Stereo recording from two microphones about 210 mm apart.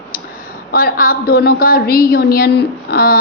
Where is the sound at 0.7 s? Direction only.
45° left (ahead or behind).